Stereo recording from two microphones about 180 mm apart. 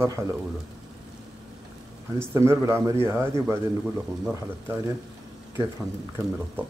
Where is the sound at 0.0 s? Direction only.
15° right (ahead or behind).